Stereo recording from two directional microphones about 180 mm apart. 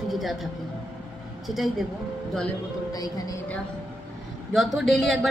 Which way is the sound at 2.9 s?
20° left (ahead or behind).